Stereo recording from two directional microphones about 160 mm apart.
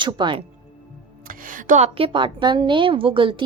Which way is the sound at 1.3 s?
55° right (ahead or behind).